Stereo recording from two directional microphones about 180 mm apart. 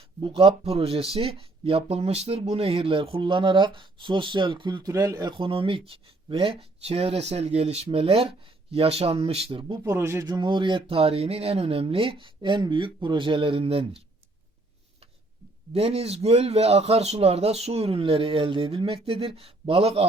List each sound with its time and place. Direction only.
0.2 s speech: 30° right (ahead or behind)
9.8 s speech: 15° right (ahead or behind); by 14.0 s 30° right (ahead or behind)
15.7 s speech: 35° right (ahead or behind)